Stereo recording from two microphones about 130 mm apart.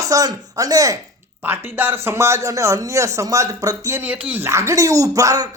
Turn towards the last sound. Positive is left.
turn(degrees=-25)  # may be behind; listen again after turning